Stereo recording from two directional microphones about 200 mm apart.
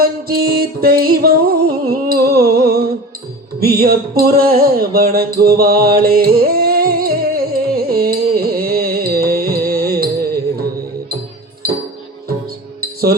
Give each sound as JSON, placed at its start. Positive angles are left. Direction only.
{"t": 0.0, "sound": "music", "side_deg": -50}
{"t": 12.8, "sound": "music", "side_deg": -50}